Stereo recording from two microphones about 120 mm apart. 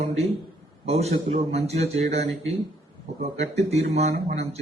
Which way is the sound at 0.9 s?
60° right (ahead or behind).